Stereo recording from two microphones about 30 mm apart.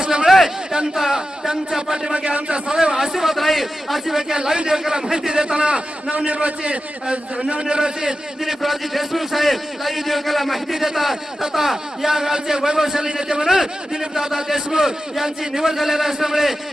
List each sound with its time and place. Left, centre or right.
0.0 s a sound: right
0.3 s a sound: centre
0.9 s speech: centre
2.1 s a man's voice: right
2.6 s a man's voice: right
3.3 s a man's voice: centre
4.5 s speech: right
5.6 s a man's voice: right
7.6 s speech: right
8.4 s a man's voice: centre